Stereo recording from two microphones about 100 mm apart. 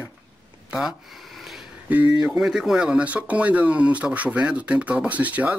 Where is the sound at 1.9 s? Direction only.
15° right (ahead or behind).